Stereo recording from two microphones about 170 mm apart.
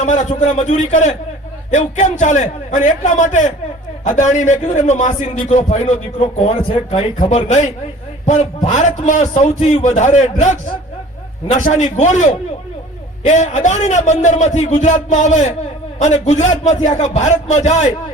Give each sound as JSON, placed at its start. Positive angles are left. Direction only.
{"t": 0.0, "sound": "a man's voice", "side_deg": 45}
{"t": 7.3, "sound": "a man's voice", "side_deg": 45}